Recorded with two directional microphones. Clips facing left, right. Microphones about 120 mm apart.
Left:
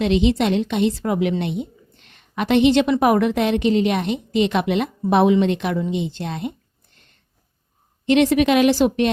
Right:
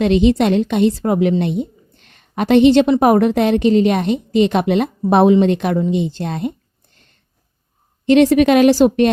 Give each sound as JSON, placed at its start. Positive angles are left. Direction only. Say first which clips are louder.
{"t": 0.0, "sound": "a woman's voice", "louder": "right 4 dB", "side_deg": -45}
{"t": 8.0, "sound": "a woman's voice", "louder": "right 5 dB", "side_deg": -40}